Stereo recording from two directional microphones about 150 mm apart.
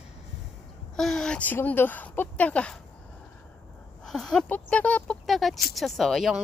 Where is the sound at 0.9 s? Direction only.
5° left (ahead or behind).